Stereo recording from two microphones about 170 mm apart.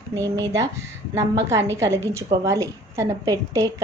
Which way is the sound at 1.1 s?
15° right (ahead or behind).